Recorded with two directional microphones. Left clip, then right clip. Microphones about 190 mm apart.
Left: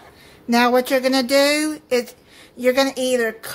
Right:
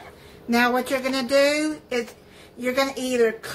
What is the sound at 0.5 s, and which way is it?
Speech, 45° left (ahead or behind).